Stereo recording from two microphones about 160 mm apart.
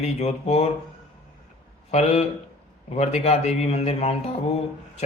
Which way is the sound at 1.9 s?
40° left (ahead or behind).